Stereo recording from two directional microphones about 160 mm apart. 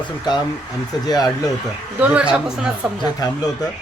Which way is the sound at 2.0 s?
10° right (ahead or behind).